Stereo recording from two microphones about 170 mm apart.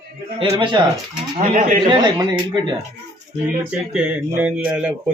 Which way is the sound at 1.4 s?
50° right (ahead or behind).